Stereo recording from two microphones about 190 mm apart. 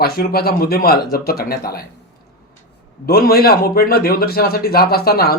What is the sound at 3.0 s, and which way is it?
Speech, 55° left (ahead or behind).